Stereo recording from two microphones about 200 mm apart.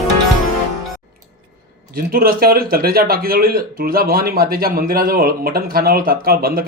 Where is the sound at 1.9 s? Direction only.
45° right (ahead or behind).